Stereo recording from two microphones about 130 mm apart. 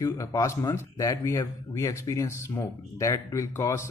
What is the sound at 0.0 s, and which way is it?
Speech, 25° left (ahead or behind).